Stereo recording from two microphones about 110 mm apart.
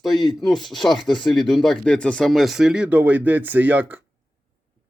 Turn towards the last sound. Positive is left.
turn(degrees=-15)  # may be behind; listen again after turning